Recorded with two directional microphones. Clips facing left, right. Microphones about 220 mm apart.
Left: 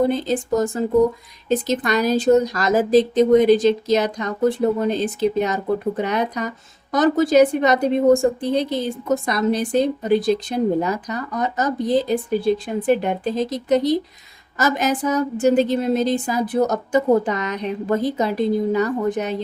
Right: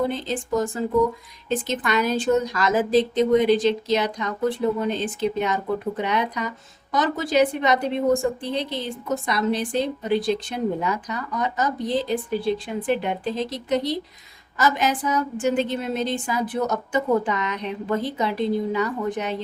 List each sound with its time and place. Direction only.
0.0 s a woman's voice: 40° left (ahead or behind)